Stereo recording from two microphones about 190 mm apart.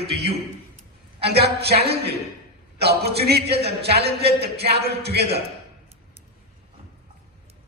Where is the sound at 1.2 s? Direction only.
60° right (ahead or behind).